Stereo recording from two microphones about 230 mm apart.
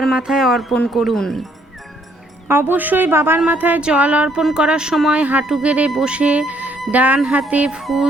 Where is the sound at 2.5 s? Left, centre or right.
Centre.